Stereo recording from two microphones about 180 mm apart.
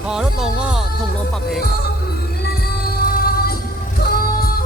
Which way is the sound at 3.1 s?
55° left (ahead or behind).